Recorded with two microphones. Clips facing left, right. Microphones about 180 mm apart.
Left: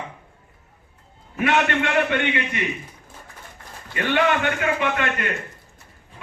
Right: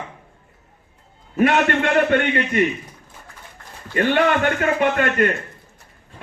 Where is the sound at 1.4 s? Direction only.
45° right (ahead or behind).